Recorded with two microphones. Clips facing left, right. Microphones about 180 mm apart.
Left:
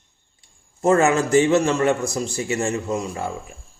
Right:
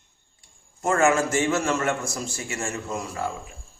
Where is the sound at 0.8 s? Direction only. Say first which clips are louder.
Left 6 dB; 35° left (ahead or behind).